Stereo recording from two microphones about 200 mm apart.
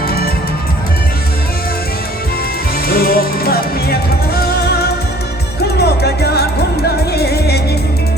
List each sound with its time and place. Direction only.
2.8 s music: 50° left (ahead or behind)